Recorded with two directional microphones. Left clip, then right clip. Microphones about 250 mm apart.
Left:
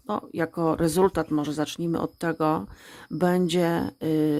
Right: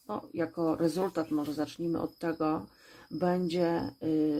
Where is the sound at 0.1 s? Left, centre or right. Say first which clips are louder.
Left 6 dB; left.